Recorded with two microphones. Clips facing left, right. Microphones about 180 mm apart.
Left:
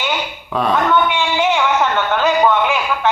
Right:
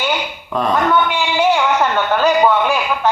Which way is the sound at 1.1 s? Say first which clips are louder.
Right 1 dB; 10° right (ahead or behind).